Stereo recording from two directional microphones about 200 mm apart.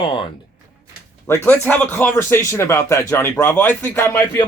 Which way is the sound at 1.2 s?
10° left (ahead or behind).